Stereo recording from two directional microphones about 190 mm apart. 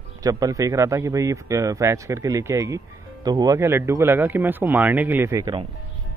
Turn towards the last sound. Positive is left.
turn(degrees=-20)  # may be behind; listen again after turning